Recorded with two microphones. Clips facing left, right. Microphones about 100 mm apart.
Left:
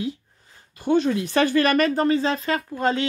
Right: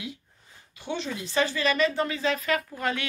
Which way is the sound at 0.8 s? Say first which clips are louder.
Left 12 dB; 50° left (ahead or behind).